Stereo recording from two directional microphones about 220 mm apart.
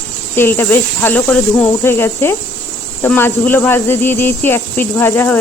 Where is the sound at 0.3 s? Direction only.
10° left (ahead or behind).